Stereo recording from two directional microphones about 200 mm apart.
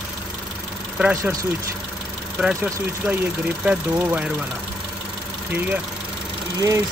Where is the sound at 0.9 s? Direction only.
5° right (ahead or behind).